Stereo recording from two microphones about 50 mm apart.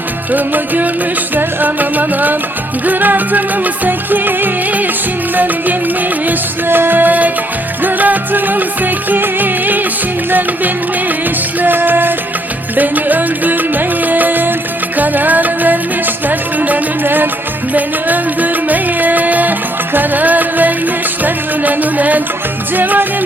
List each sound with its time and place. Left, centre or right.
0.3 s music: right
11.6 s music: right